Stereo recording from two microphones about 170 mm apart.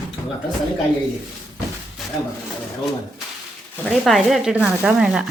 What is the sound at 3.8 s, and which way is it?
Speech, centre (ahead or behind).